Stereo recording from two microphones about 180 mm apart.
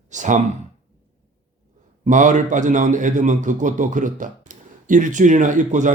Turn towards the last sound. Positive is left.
turn(degrees=-45)  # may be behind; listen again after turning